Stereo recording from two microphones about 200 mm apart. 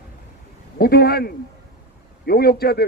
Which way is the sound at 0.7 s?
50° left (ahead or behind).